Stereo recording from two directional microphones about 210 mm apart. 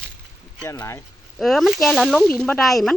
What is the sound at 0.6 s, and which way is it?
Speech, 15° left (ahead or behind).